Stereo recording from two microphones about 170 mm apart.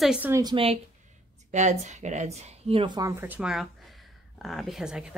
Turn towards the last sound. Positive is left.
turn(degrees=-5)  # may be behind; listen again after turning